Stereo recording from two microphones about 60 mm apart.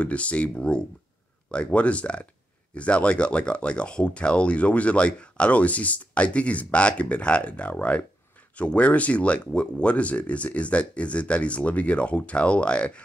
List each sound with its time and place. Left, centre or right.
0.0 s speech: left